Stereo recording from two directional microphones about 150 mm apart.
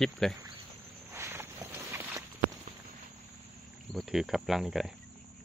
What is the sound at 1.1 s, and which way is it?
Walk, 15° right (ahead or behind).